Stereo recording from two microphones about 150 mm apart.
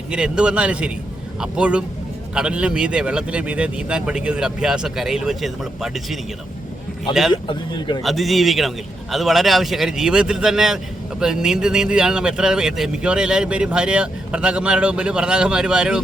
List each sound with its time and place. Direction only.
0.1 s a man's voice: 5° right (ahead or behind)
7.4 s speech: 30° left (ahead or behind)
8.0 s speech: centre (ahead or behind)